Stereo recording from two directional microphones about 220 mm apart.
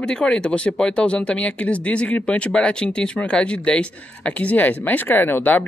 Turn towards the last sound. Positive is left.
turn(degrees=10)  # may be behind; listen again after turning